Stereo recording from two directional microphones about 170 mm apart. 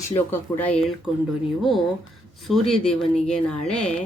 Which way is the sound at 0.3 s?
10° left (ahead or behind).